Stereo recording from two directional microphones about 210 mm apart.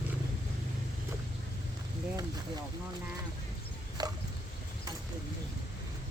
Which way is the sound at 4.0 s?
20° right (ahead or behind).